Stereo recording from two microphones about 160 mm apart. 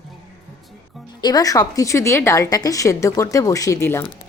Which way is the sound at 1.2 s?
25° left (ahead or behind).